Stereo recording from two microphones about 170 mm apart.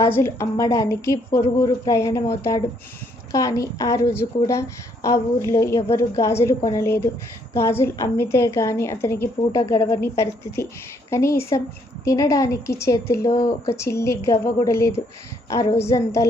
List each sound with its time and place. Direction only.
0.0 s a woman's voice: 15° left (ahead or behind)
3.3 s a woman's voice: 20° left (ahead or behind)